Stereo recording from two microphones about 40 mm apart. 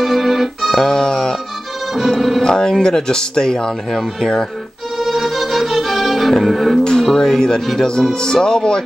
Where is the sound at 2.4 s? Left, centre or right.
Centre.